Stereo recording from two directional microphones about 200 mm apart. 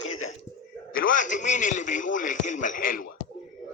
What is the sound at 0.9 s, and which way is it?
A man's voice, 40° left (ahead or behind).